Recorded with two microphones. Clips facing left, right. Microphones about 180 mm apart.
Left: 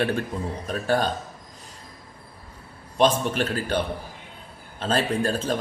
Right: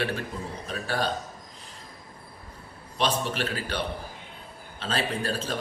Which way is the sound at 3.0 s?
45° left (ahead or behind).